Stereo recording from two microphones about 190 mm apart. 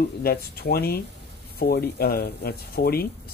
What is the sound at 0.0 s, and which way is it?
Speech, 55° left (ahead or behind).